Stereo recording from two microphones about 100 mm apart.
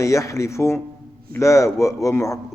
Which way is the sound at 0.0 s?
30° left (ahead or behind).